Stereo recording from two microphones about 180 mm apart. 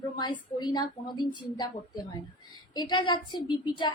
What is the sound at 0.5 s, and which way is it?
Speech, 25° left (ahead or behind).